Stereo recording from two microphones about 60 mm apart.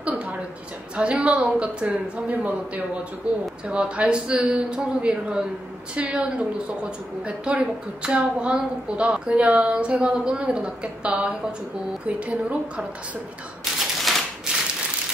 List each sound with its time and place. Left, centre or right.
0.0 s a sound: right
0.9 s a woman's voice: centre
13.7 s typewriter: centre